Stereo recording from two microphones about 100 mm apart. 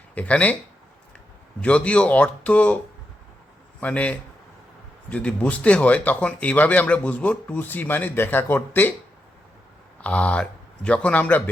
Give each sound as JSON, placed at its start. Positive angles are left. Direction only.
{"t": 0.1, "sound": "speech", "side_deg": 15}
{"t": 1.6, "sound": "speech", "side_deg": 15}
{"t": 3.8, "sound": "speech", "side_deg": 15}
{"t": 10.0, "sound": "speech", "side_deg": 15}